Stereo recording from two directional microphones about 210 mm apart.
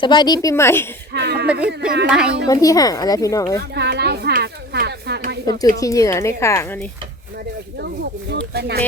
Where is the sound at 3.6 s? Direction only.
50° right (ahead or behind).